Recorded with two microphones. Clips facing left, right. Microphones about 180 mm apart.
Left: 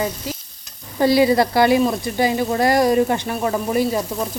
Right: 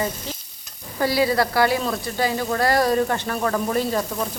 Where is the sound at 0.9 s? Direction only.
20° left (ahead or behind).